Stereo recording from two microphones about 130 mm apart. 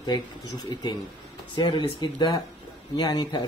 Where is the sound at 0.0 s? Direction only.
35° left (ahead or behind).